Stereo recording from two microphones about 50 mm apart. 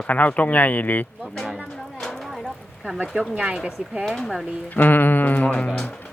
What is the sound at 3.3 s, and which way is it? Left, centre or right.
Speech, right.